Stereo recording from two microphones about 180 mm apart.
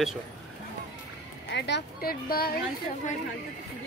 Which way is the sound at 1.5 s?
75° left (ahead or behind).